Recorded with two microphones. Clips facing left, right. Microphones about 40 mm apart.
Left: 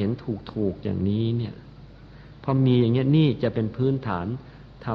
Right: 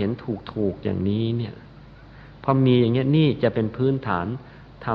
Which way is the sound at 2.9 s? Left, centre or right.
Centre.